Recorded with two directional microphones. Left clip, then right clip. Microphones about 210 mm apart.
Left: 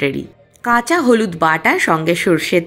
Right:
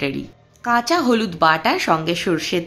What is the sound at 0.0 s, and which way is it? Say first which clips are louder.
Speech: left 5 dB; 15° left (ahead or behind).